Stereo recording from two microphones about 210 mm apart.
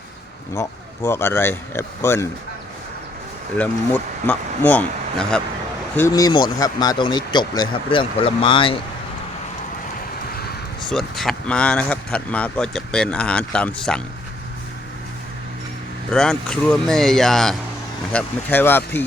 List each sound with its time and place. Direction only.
0.5 s speech: 15° left (ahead or behind)
3.6 s speech: 10° left (ahead or behind)
6.0 s speech: 15° left (ahead or behind)
10.8 s speech: centre (ahead or behind)
16.1 s speech: 5° left (ahead or behind)